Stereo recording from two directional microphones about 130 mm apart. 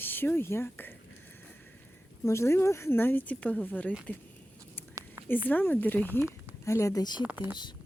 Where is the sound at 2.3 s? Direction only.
20° left (ahead or behind).